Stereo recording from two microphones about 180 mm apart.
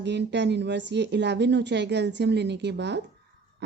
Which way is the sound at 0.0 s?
70° right (ahead or behind).